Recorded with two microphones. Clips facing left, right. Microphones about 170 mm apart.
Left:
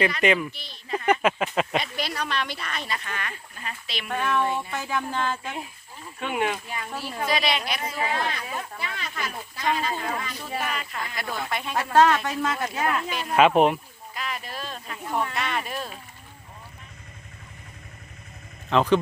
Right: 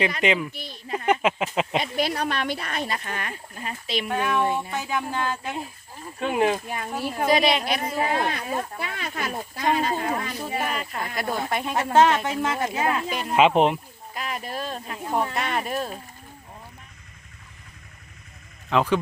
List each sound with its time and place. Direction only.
0.2 s speech: 15° right (ahead or behind)
0.5 s speech: 50° right (ahead or behind)
0.9 s speech: 20° right (ahead or behind)
1.8 s speech: 45° right (ahead or behind)
4.1 s speech: 10° right (ahead or behind)
6.1 s speech: 35° right (ahead or behind)
6.7 s speech: 50° right (ahead or behind)
11.8 s speech: 25° right (ahead or behind)
14.1 s speech: 45° right (ahead or behind)
18.7 s speech: 10° right (ahead or behind)